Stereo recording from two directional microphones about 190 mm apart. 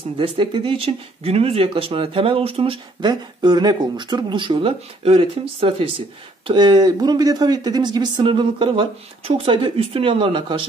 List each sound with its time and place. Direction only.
0.2 s speech: 25° right (ahead or behind)